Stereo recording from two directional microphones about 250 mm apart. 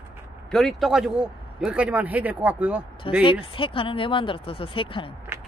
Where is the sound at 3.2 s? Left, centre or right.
Left.